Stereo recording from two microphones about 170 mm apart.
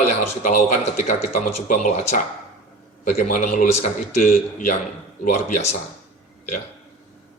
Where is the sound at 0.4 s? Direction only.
45° left (ahead or behind).